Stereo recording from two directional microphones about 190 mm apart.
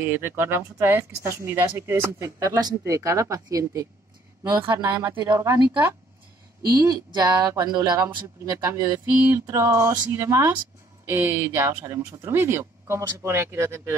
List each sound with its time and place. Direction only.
0.0 s speech: 10° right (ahead or behind)